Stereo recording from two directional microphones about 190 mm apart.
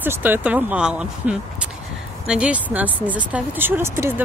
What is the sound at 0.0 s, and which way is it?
Speech, 10° right (ahead or behind).